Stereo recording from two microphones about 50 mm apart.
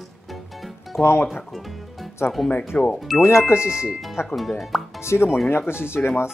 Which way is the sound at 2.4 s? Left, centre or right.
Centre.